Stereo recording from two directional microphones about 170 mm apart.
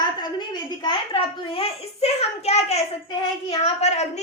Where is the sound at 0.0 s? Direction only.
25° left (ahead or behind).